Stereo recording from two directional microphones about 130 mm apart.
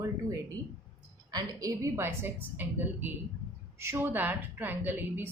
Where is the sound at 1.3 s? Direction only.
30° right (ahead or behind).